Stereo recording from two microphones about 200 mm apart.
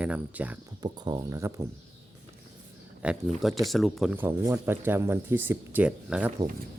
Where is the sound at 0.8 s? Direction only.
20° right (ahead or behind).